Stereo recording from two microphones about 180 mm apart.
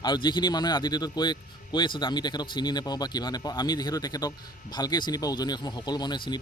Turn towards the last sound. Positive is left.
turn(degrees=25)  # may be behind; listen again after turning